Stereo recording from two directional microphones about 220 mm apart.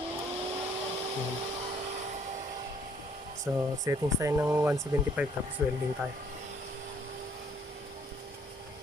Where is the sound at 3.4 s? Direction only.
15° right (ahead or behind).